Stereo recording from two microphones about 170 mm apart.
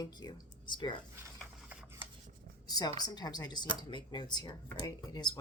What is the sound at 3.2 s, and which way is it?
Speech, 25° left (ahead or behind).